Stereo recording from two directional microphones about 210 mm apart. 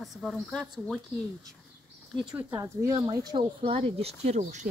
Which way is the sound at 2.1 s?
5° right (ahead or behind).